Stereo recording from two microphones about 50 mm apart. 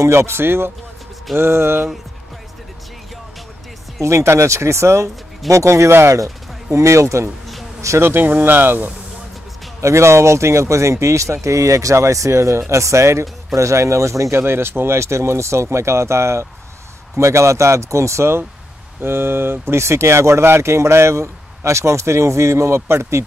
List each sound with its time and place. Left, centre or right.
0.0 s speech: right
4.0 s speech: right
5.5 s speech: right
8.0 s speech: right
9.8 s speech: right
11.4 s speech: right
13.6 s speech: right
14.3 s speech: right
17.2 s speech: right
19.0 s speech: right